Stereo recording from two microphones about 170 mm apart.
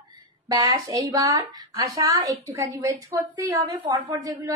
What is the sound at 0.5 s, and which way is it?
A woman's voice, 25° right (ahead or behind).